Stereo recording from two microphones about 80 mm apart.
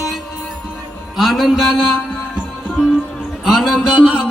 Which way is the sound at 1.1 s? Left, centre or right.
Centre.